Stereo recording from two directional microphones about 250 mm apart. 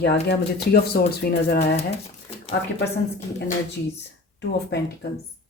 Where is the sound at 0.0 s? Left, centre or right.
Left.